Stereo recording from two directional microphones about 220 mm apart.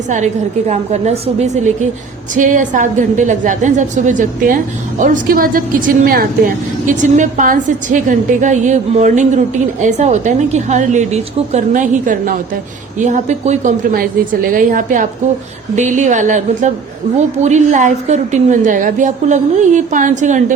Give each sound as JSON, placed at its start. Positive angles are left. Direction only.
{"t": 0.7, "sound": "a woman's voice", "side_deg": -30}
{"t": 6.8, "sound": "a woman's voice", "side_deg": -35}